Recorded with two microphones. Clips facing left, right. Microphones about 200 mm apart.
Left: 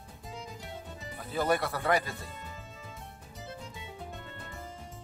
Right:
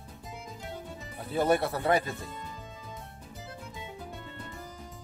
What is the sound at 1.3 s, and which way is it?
Speech, 25° right (ahead or behind).